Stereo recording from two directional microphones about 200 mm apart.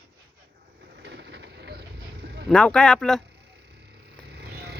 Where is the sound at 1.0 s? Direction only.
60° right (ahead or behind).